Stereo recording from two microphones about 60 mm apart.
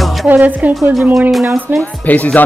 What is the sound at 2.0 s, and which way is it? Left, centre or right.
Speech, left.